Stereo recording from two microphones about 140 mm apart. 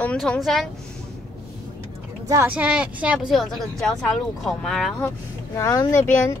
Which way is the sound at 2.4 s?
10° right (ahead or behind).